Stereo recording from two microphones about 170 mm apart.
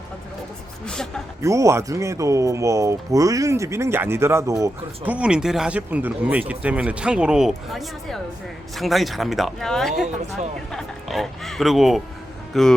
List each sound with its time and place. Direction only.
0.9 s speech: 5° left (ahead or behind)
1.4 s speech: 15° right (ahead or behind); by 12.7 s centre (ahead or behind)